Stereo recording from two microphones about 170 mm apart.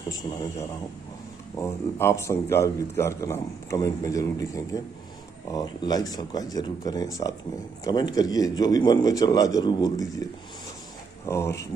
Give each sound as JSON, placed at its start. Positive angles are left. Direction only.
{"t": 1.6, "sound": "a man's voice", "side_deg": 15}
{"t": 11.2, "sound": "a man's voice", "side_deg": 15}